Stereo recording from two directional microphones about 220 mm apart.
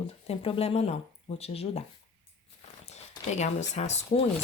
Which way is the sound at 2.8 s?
30° left (ahead or behind).